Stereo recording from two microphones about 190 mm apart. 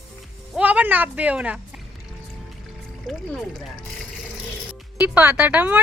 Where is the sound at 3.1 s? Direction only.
5° left (ahead or behind).